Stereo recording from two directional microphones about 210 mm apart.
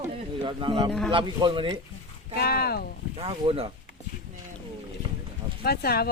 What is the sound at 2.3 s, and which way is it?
Speech, 50° left (ahead or behind).